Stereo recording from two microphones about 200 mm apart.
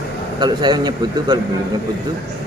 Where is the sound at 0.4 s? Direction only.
20° right (ahead or behind).